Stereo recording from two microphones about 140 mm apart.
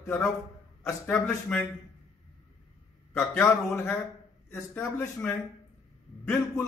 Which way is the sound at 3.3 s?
15° left (ahead or behind).